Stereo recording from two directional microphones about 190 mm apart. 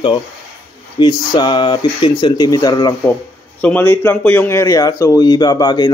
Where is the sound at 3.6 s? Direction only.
10° left (ahead or behind).